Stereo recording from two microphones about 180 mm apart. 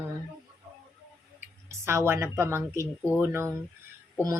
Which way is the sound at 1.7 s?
15° right (ahead or behind).